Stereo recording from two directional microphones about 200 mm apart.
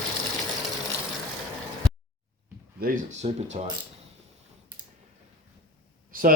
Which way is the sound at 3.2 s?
30° right (ahead or behind).